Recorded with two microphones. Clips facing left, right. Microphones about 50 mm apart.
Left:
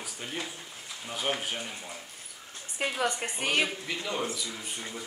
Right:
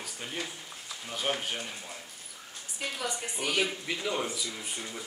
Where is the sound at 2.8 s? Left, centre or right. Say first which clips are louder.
Left 5 dB; left.